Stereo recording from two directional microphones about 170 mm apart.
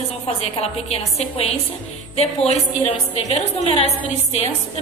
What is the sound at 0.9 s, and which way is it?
A woman's voice, 35° left (ahead or behind).